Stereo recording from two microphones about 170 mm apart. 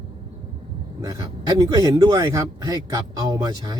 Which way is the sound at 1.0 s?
20° right (ahead or behind).